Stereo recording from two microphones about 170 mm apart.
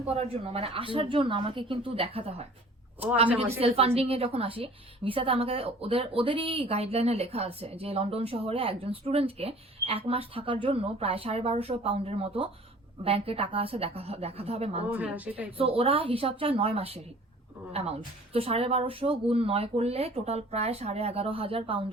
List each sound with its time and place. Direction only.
0.1 s a woman's voice: 35° right (ahead or behind)
3.6 s a woman's voice: 35° right (ahead or behind)
14.9 s speech: 10° right (ahead or behind)
15.5 s a woman's voice: 35° right (ahead or behind)